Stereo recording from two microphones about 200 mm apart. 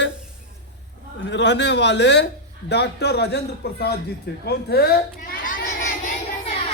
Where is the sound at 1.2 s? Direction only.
60° left (ahead or behind).